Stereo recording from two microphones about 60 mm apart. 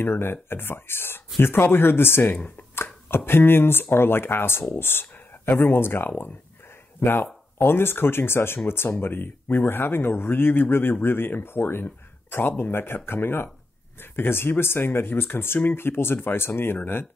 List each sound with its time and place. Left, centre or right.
0.0 s speech: left
2.7 s chopping: left
3.9 s speech: left